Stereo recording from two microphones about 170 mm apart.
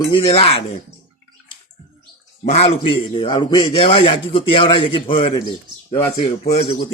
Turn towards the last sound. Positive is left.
turn(degrees=35)  # may be behind; listen again after turning